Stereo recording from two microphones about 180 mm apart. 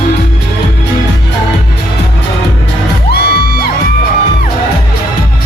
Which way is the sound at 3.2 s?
60° left (ahead or behind).